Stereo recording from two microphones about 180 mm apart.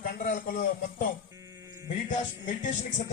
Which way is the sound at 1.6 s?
15° right (ahead or behind).